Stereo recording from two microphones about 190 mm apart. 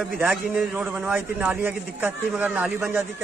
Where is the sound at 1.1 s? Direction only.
10° right (ahead or behind).